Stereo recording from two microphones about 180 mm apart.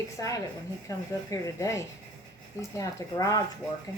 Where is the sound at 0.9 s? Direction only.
15° left (ahead or behind).